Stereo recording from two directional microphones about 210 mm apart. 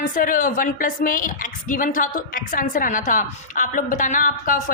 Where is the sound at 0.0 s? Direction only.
40° left (ahead or behind).